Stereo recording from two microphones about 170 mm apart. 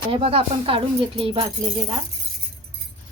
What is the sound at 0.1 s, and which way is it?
Speech, 35° right (ahead or behind).